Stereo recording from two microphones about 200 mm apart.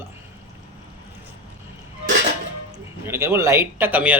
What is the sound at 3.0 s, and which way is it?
A man's voice, 10° right (ahead or behind).